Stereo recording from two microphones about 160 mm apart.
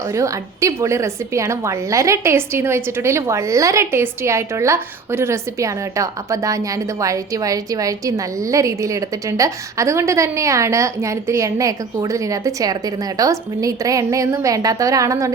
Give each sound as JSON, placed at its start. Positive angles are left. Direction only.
{"t": 0.1, "sound": "a woman's voice", "side_deg": -20}